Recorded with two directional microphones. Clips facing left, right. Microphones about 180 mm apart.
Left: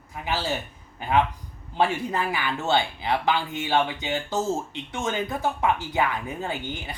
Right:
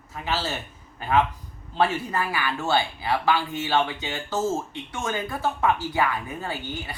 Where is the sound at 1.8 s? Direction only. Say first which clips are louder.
Even; 20° left (ahead or behind).